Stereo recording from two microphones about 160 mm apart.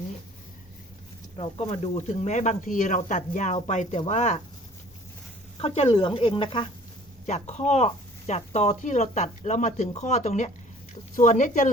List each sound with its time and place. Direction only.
1.7 s speech: 40° left (ahead or behind)
5.5 s speech: 40° left (ahead or behind)
7.3 s speech: 45° left (ahead or behind)